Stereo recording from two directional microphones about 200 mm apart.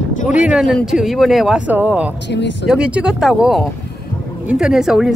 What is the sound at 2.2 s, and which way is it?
Speech, 60° left (ahead or behind).